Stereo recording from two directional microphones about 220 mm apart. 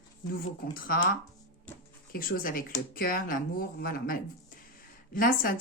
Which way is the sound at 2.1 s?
40° left (ahead or behind).